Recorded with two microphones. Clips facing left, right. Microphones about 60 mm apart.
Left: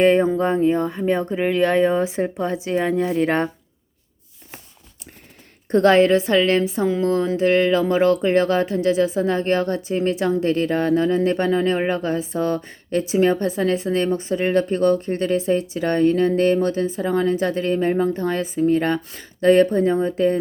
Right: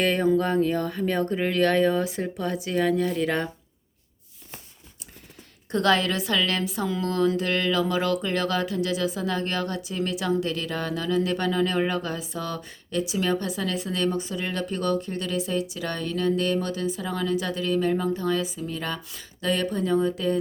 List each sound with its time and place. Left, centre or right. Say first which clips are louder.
0.0 s speech: left 6 dB; left
5.7 s a woman's voice: left 8 dB; left